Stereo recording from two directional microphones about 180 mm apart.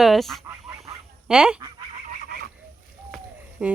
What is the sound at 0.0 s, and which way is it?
A woman's voice, centre (ahead or behind).